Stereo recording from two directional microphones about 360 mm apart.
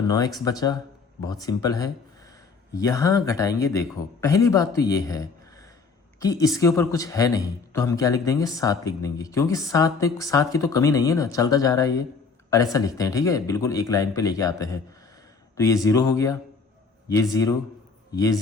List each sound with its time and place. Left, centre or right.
0.0 s a man's voice: centre